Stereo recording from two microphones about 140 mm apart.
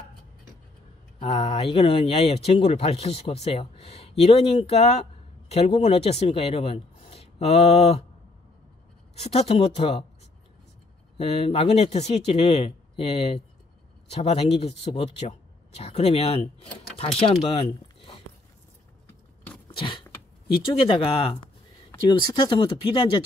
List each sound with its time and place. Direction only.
1.2 s speech: 50° left (ahead or behind)
9.1 s speech: 50° left (ahead or behind)
11.1 s speech: 45° left (ahead or behind)
19.0 s keys jangling: 10° left (ahead or behind)
19.7 s vehicle: 35° left (ahead or behind)
20.8 s speech: 40° left (ahead or behind)